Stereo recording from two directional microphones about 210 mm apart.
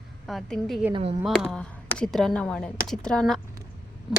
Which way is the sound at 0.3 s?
Centre (ahead or behind).